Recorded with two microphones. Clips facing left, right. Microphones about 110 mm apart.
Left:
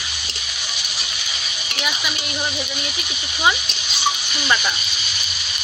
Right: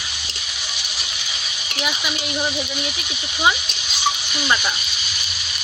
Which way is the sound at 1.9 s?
5° right (ahead or behind).